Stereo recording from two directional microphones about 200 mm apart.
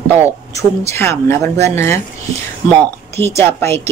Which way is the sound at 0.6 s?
15° left (ahead or behind).